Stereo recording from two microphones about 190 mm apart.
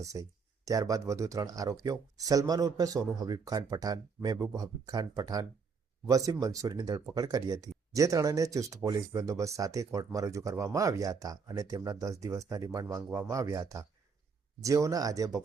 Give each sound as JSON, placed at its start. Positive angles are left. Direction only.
{"t": 0.0, "sound": "speech", "side_deg": -15}